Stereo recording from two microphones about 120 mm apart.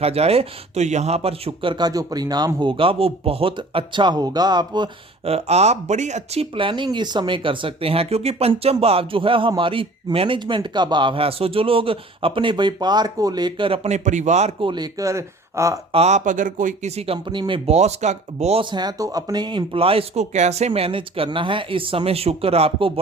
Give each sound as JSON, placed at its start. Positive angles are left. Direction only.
{"t": 0.0, "sound": "speech", "side_deg": -60}
{"t": 2.6, "sound": "speech", "side_deg": -45}
{"t": 5.2, "sound": "speech", "side_deg": -60}
{"t": 14.6, "sound": "speech", "side_deg": -40}
{"t": 14.9, "sound": "speech", "side_deg": -25}
{"t": 15.9, "sound": "speech", "side_deg": -65}
{"t": 17.2, "sound": "speech", "side_deg": -40}
{"t": 17.7, "sound": "speech", "side_deg": -70}
{"t": 18.6, "sound": "speech", "side_deg": -40}
{"t": 20.3, "sound": "speech", "side_deg": -70}